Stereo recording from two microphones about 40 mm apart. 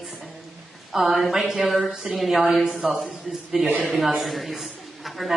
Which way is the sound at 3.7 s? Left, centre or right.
Left.